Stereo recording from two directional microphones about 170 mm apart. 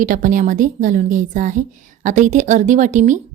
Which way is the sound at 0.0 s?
50° right (ahead or behind).